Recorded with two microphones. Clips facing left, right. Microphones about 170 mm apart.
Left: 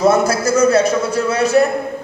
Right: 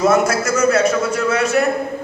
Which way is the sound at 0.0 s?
35° left (ahead or behind).